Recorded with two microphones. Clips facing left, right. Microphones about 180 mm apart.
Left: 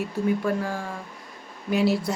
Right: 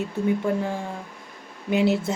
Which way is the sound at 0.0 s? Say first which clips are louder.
Right 1 dB; 25° right (ahead or behind).